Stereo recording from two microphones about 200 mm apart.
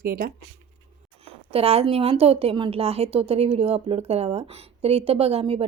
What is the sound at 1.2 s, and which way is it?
A woman's voice, 30° right (ahead or behind).